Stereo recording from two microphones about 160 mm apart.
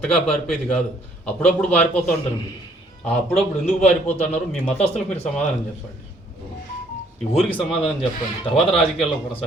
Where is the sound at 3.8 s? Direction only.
45° left (ahead or behind).